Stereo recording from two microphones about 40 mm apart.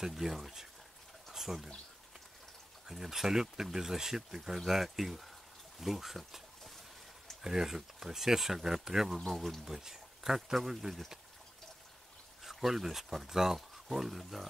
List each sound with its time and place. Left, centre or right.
0.2 s speech: centre
2.9 s speech: centre
7.4 s speech: centre
9.3 s speech: centre
9.7 s speech: centre
12.4 s speech: centre